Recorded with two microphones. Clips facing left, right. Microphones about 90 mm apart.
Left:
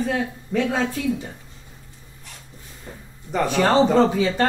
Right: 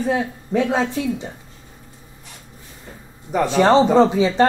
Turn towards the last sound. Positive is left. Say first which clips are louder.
# right 3 dB
turn(degrees=-10)  # may be behind; listen again after turning